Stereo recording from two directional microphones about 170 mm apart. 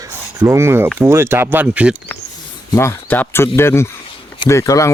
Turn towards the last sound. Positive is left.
turn(degrees=20)  # may be behind; listen again after turning